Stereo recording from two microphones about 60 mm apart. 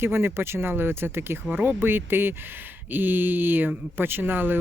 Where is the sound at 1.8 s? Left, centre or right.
Right.